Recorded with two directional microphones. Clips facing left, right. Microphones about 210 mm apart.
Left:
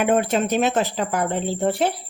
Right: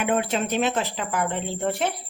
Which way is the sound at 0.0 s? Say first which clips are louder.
Left 4 dB; 45° left (ahead or behind).